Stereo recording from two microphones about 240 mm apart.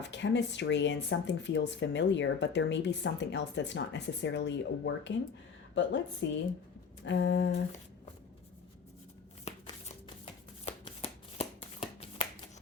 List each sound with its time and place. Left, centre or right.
0.0 s speech: left
9.4 s shuffling cards: left